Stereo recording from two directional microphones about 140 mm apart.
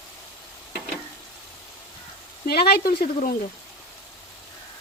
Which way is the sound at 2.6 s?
90° left.